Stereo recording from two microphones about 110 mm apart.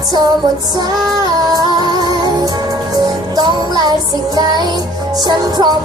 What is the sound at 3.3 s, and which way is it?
Music, 40° right (ahead or behind).